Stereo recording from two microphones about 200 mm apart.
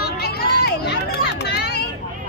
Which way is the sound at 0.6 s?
55° left (ahead or behind).